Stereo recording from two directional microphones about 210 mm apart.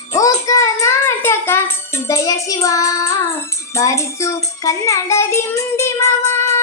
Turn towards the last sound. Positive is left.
turn(degrees=15)  # may be behind; listen again after turning